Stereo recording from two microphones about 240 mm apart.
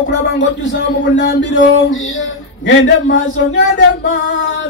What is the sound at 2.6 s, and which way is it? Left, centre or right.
Speech, left.